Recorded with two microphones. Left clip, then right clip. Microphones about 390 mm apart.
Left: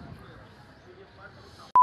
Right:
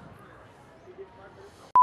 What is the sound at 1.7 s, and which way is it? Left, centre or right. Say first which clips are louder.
Telephone dialing: even; centre.